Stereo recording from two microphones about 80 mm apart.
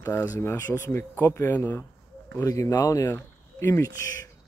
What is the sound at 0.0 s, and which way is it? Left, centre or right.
Speech, left.